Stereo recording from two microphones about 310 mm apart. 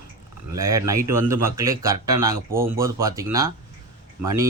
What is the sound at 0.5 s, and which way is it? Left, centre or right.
Speech, centre.